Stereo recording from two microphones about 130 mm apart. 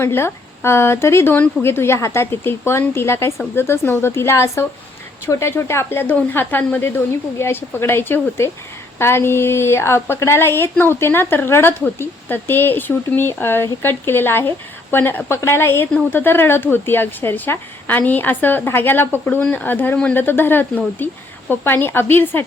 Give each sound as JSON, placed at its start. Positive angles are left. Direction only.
{"t": 0.0, "sound": "a woman's voice", "side_deg": 15}